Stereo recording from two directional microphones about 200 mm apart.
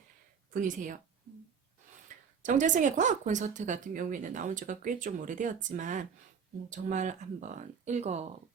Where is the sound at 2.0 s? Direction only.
40° right (ahead or behind).